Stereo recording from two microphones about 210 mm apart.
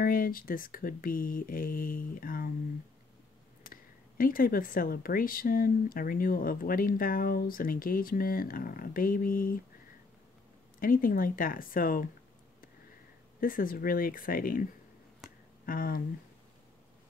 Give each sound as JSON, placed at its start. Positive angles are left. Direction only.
{"t": 0.0, "sound": "speech", "side_deg": 45}
{"t": 3.6, "sound": "speech", "side_deg": 40}
{"t": 10.8, "sound": "speech", "side_deg": 40}
{"t": 13.4, "sound": "speech", "side_deg": 40}
{"t": 15.6, "sound": "a sound", "side_deg": 45}